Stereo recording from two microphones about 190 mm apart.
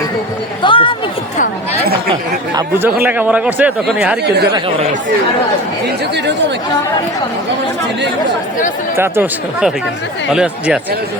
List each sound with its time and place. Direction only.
0.6 s a sound: 25° left (ahead or behind)
2.6 s speech: 10° right (ahead or behind)
4.2 s speech: 60° right (ahead or behind)
9.0 s speech: 10° right (ahead or behind)